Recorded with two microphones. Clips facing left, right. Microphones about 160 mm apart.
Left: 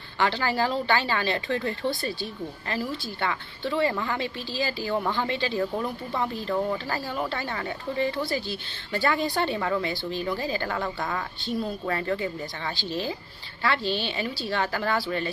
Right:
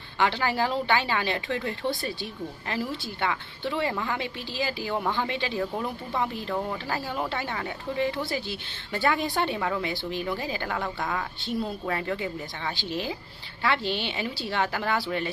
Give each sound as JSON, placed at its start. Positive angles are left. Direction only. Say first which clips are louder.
{"t": 0.2, "sound": "a woman's voice", "louder": "even", "side_deg": -15}
{"t": 6.9, "sound": "a woman's voice", "louder": "even", "side_deg": -20}
{"t": 10.7, "sound": "a woman's voice", "louder": "left 1 dB", "side_deg": 0}
{"t": 11.4, "sound": "a woman's voice", "louder": "left 2 dB", "side_deg": -10}